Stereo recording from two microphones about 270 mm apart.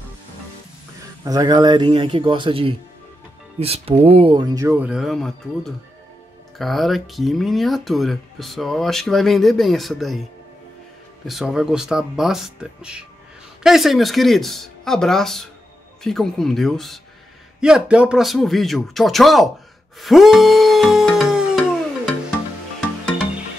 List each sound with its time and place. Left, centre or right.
1.2 s speech: centre
11.2 s speech: centre
20.0 s a sound: centre